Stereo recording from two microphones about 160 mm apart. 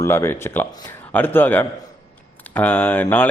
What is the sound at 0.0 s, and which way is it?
A man's voice, 15° left (ahead or behind).